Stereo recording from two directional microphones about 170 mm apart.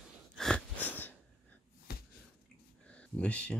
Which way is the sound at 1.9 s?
70° left (ahead or behind).